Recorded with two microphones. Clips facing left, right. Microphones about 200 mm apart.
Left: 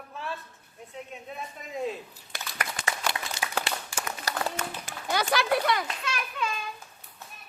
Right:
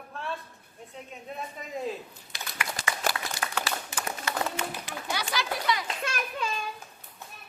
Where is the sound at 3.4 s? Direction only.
10° left (ahead or behind).